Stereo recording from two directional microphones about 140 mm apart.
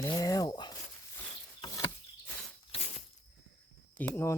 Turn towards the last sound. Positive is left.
turn(degrees=15)  # may be behind; listen again after turning